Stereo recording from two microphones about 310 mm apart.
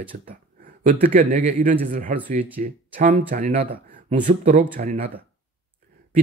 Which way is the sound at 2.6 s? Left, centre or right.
Right.